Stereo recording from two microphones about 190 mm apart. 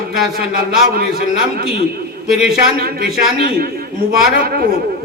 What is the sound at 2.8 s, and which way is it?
A man's voice, 50° right (ahead or behind).